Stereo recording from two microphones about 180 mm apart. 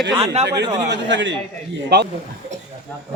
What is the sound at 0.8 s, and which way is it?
Speech, 80° right.